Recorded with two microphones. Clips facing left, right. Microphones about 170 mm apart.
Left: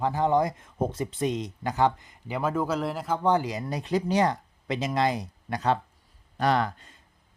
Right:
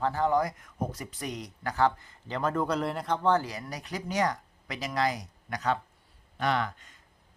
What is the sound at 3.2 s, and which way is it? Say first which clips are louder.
Speech: left 3 dB; 15° left (ahead or behind).